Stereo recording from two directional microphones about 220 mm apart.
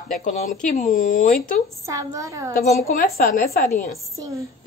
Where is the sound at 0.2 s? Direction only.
35° left (ahead or behind).